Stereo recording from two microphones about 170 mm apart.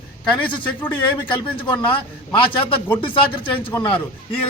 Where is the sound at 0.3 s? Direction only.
30° left (ahead or behind).